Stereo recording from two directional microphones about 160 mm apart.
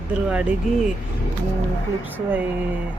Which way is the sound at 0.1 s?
5° right (ahead or behind).